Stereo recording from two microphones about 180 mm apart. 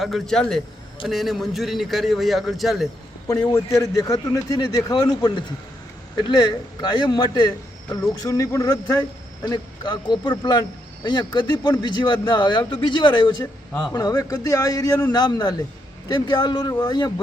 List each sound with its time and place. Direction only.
0.0 s a man's voice: centre (ahead or behind)
3.5 s speech: 15° left (ahead or behind)